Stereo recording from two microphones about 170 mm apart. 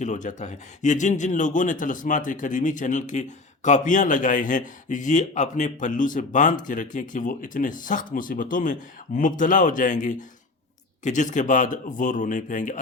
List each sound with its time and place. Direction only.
0.0 s speech: 45° left (ahead or behind)